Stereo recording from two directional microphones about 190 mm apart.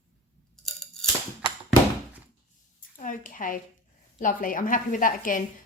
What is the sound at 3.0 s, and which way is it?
A woman's voice, 45° left (ahead or behind).